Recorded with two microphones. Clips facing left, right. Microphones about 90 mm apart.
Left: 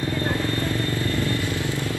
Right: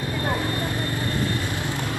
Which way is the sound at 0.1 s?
20° right (ahead or behind).